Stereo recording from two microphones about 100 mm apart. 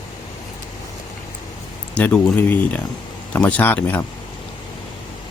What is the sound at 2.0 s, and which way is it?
A man's voice, 15° left (ahead or behind).